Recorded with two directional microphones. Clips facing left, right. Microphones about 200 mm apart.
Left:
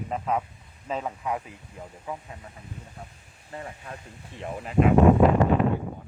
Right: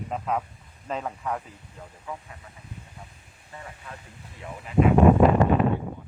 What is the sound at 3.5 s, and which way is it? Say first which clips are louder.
Speech: left 4 dB; 35° left (ahead or behind).